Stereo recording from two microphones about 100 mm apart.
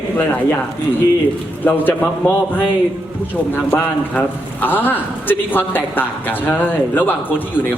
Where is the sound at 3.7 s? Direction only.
15° left (ahead or behind).